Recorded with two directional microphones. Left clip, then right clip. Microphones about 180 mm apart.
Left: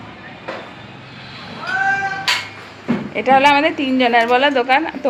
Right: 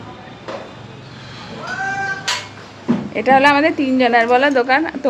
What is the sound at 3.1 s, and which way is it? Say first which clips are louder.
Speech: even; 5° right (ahead or behind).